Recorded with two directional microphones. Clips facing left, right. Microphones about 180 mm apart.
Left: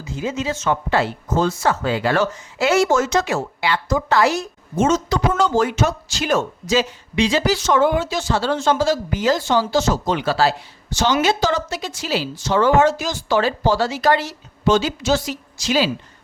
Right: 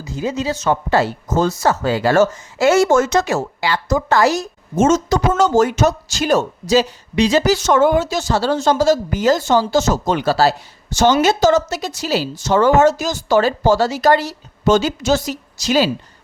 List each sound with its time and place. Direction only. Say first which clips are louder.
0.0 s speech: right 3 dB; 40° right (ahead or behind)